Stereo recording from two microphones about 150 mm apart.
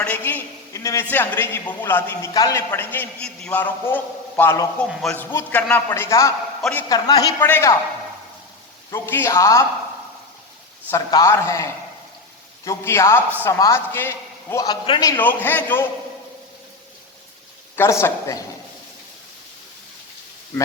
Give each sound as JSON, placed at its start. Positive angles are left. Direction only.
{"t": 0.0, "sound": "a man's voice", "side_deg": 10}
{"t": 5.9, "sound": "speech", "side_deg": 20}
{"t": 6.6, "sound": "a man's voice", "side_deg": 5}
{"t": 6.8, "sound": "speech", "side_deg": 25}
{"t": 7.3, "sound": "a man's voice", "side_deg": 15}
{"t": 8.9, "sound": "speech", "side_deg": 15}
{"t": 10.9, "sound": "a man's voice", "side_deg": 20}
{"t": 14.5, "sound": "speech", "side_deg": 25}
{"t": 15.2, "sound": "a man's voice", "side_deg": 15}
{"t": 17.7, "sound": "speech", "side_deg": 15}